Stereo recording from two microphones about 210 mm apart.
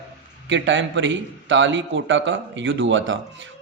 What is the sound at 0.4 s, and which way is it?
A man's voice, 60° right (ahead or behind).